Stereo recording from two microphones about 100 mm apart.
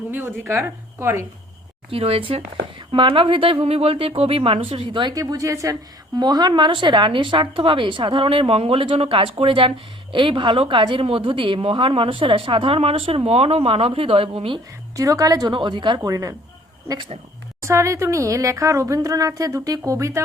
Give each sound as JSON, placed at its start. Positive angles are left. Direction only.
{"t": 0.1, "sound": "a woman's voice", "side_deg": -25}
{"t": 1.9, "sound": "speech", "side_deg": -65}
{"t": 5.1, "sound": "speech", "side_deg": -35}
{"t": 6.1, "sound": "speech", "side_deg": -45}
{"t": 14.9, "sound": "speech", "side_deg": -35}
{"t": 15.5, "sound": "a woman's voice", "side_deg": -55}
{"t": 16.0, "sound": "speech", "side_deg": -35}
{"t": 17.6, "sound": "speech", "side_deg": -30}